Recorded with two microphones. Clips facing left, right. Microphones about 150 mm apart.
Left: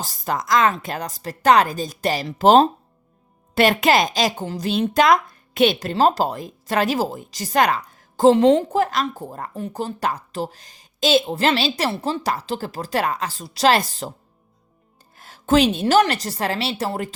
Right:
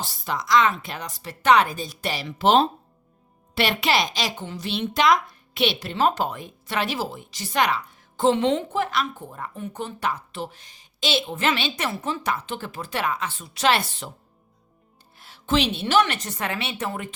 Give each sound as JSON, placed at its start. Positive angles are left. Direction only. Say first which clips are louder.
{"t": 0.0, "sound": "a woman's voice", "louder": "left 4 dB", "side_deg": 45}
{"t": 15.2, "sound": "a woman's voice", "louder": "left 6 dB", "side_deg": 45}